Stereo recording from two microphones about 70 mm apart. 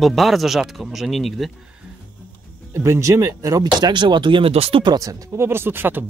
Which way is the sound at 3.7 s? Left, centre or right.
Right.